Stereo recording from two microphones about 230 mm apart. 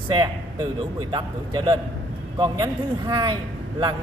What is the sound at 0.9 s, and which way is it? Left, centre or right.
A man's voice, centre.